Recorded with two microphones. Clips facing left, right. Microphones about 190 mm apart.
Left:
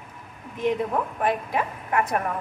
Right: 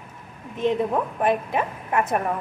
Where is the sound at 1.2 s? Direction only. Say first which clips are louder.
Right 3 dB; 20° right (ahead or behind).